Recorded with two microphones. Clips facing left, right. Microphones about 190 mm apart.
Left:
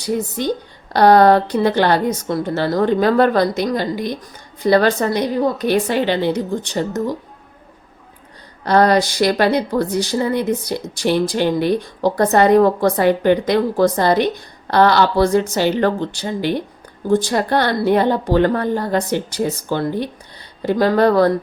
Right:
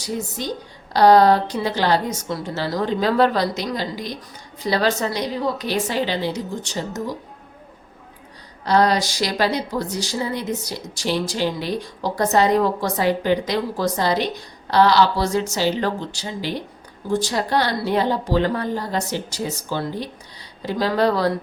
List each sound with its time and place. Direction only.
0.0 s speech: 60° left (ahead or behind)
8.6 s speech: 55° left (ahead or behind)